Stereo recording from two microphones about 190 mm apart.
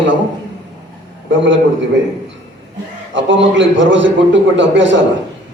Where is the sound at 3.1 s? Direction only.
75° right (ahead or behind).